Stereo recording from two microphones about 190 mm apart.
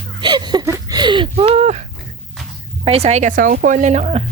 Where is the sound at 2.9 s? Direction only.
35° right (ahead or behind).